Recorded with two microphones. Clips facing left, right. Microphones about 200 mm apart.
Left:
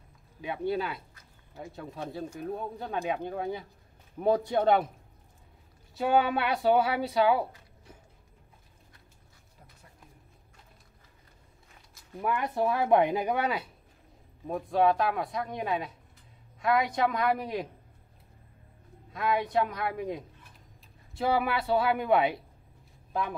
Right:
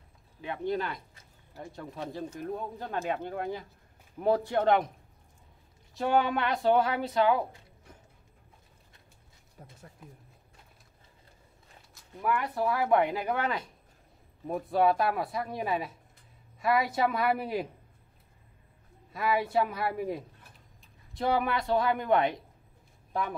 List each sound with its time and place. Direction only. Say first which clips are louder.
0.4 s speech: left 1 dB; 10° left (ahead or behind)
5.9 s speech: left 1 dB; 5° left (ahead or behind)
12.2 s speech: left 1 dB; 20° left (ahead or behind)
14.5 s speech: left 1 dB; 5° right (ahead or behind)
19.1 s speech: even; 5° right (ahead or behind)